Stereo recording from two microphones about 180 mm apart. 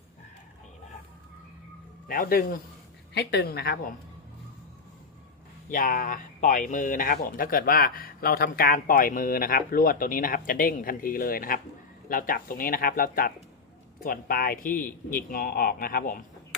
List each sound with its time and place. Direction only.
2.0 s speech: 50° left (ahead or behind)
3.2 s a woman's voice: 65° left (ahead or behind)
5.6 s speech: 50° left (ahead or behind)